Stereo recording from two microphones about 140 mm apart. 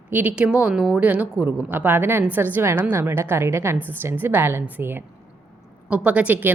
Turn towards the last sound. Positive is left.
turn(degrees=-10)  # may be behind; listen again after turning